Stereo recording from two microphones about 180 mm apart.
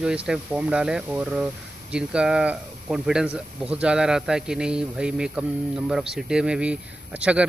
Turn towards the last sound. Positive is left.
turn(degrees=-5)  # may be behind; listen again after turning